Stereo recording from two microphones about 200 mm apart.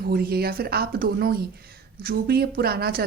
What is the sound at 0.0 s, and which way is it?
Speech, 50° right (ahead or behind).